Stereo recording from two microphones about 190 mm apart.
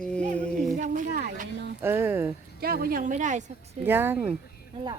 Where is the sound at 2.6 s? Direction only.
55° right (ahead or behind).